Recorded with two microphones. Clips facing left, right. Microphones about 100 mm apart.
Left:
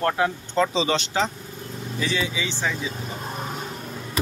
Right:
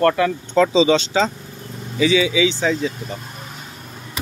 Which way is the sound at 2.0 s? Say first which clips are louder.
Right 11 dB; 90° right.